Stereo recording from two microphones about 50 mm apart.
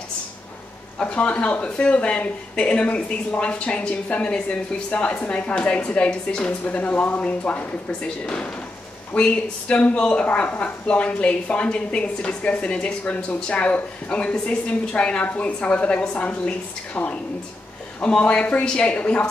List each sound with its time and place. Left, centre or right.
0.9 s speech: left
6.6 s speech: left
9.1 s speech: left